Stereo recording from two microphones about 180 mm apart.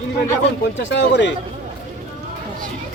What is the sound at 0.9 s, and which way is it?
Speech, 85° left.